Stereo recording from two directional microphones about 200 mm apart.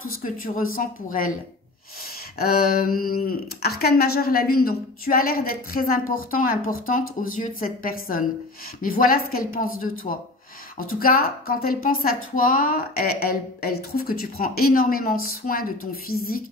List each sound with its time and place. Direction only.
0.2 s speech: 45° left (ahead or behind)
2.3 s speech: 50° left (ahead or behind)
10.1 s speech: 35° left (ahead or behind)
10.8 s speech: 45° left (ahead or behind)